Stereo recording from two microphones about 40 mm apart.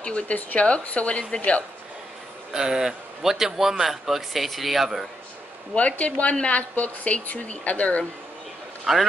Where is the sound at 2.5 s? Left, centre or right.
Centre.